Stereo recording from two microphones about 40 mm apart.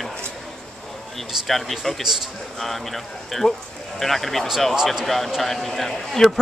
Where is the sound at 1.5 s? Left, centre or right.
Centre.